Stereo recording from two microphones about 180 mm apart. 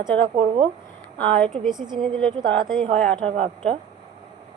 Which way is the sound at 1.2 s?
5° left (ahead or behind).